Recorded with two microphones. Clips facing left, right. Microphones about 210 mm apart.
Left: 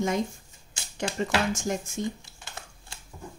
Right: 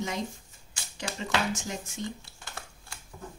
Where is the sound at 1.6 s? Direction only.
50° left (ahead or behind).